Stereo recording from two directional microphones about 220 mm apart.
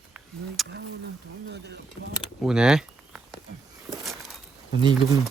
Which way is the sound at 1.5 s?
50° right (ahead or behind).